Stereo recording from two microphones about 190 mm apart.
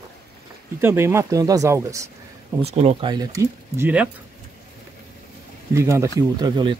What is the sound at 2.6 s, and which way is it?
Speech, 35° right (ahead or behind).